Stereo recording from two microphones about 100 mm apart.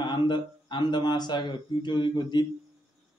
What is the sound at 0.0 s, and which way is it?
Speech, 50° left (ahead or behind).